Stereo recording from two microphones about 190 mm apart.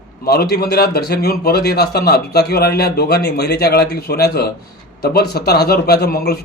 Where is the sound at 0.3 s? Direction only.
55° left (ahead or behind).